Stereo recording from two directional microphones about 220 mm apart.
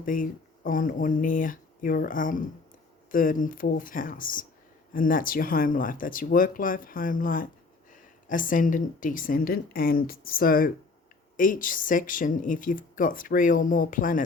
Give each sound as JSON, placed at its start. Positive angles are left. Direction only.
{"t": 0.0, "sound": "speech", "side_deg": 40}